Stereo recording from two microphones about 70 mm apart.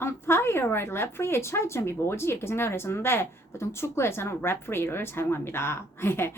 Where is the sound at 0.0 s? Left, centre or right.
Left.